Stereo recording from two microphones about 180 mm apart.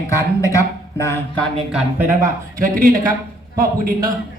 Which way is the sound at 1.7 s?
5° right (ahead or behind).